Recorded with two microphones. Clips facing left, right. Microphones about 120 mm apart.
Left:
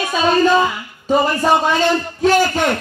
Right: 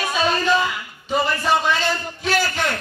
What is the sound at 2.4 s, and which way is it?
Speech, 20° left (ahead or behind).